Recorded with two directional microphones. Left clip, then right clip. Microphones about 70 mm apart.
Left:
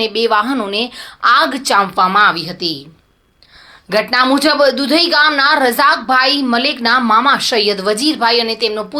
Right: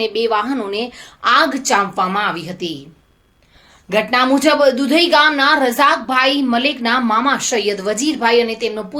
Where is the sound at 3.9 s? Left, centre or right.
Left.